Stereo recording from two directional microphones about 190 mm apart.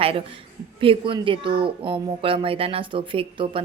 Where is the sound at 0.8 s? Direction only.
25° right (ahead or behind).